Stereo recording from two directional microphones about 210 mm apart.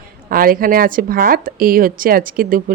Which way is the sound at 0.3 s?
45° right (ahead or behind).